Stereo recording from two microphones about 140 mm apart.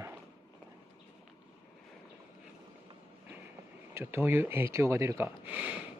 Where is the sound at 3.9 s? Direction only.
15° right (ahead or behind).